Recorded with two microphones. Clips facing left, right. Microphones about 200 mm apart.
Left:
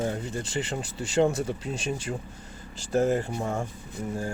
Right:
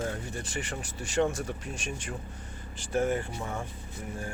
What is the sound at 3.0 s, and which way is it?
Speech, 25° left (ahead or behind).